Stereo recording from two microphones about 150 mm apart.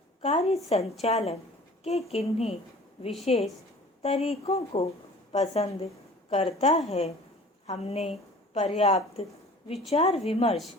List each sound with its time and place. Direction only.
0.2 s a woman's voice: 40° left (ahead or behind)